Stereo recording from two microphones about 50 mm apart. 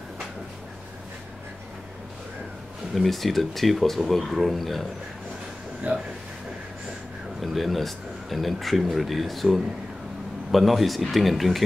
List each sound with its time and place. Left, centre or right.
2.9 s speech: centre
5.9 s speech: right
7.4 s speech: centre